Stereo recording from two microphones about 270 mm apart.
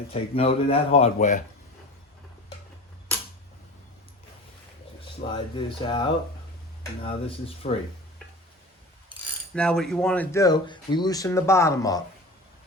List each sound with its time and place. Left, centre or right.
0.1 s speech: left
5.3 s speech: centre
9.6 s speech: centre